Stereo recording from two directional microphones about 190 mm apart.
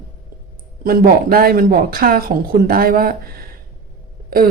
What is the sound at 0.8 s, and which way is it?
A woman's voice, 50° right (ahead or behind).